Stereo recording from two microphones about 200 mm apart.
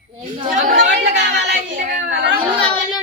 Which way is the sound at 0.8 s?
60° right (ahead or behind).